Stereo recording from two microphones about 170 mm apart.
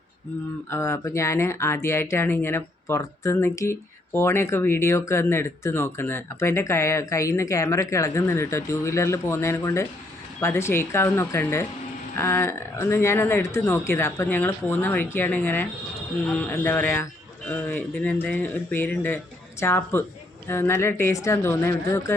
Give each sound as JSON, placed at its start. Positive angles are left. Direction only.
{"t": 0.7, "sound": "speech", "side_deg": 15}